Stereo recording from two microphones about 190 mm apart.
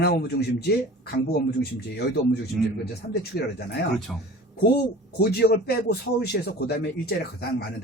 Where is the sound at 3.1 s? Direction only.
60° left (ahead or behind).